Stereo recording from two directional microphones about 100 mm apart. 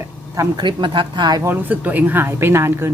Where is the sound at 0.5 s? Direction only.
50° right (ahead or behind).